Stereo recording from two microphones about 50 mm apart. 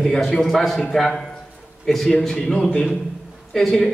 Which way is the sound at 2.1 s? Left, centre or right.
Centre.